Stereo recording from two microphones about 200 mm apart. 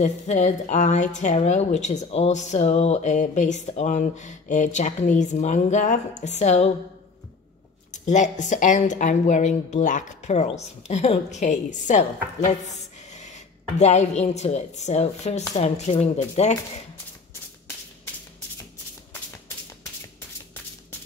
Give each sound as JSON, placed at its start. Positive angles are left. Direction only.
{"t": 0.0, "sound": "speech", "side_deg": 35}
{"t": 8.1, "sound": "speech", "side_deg": 40}